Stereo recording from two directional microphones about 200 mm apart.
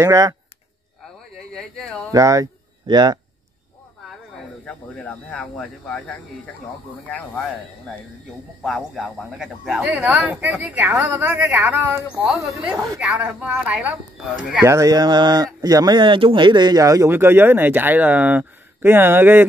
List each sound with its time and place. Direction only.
0.0 s speech: 15° right (ahead or behind)
1.3 s a sound: centre (ahead or behind)
2.1 s speech: 15° right (ahead or behind)
4.6 s speech: 5° left (ahead or behind)
8.6 s speech: centre (ahead or behind)
14.6 s speech: 15° right (ahead or behind)